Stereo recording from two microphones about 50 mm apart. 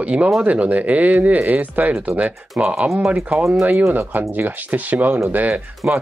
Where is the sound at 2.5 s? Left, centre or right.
Centre.